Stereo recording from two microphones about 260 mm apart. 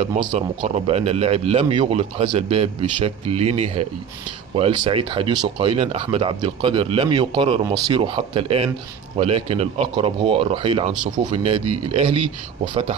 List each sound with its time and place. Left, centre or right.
0.0 s speech: right